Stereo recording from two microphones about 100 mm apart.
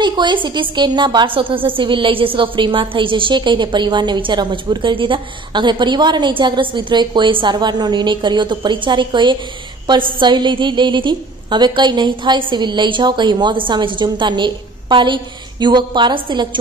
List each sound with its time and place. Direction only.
0.0 s a woman's voice: 50° right (ahead or behind)